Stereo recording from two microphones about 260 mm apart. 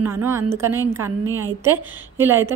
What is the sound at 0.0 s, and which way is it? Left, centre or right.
Speech, centre.